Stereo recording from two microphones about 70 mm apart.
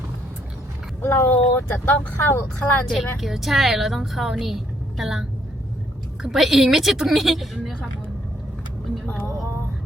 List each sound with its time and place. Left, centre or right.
1.0 s speech: left
2.8 s a woman's voice: centre
6.2 s a woman's voice: centre